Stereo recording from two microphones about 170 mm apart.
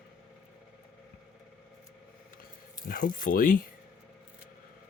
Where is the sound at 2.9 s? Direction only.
55° left (ahead or behind).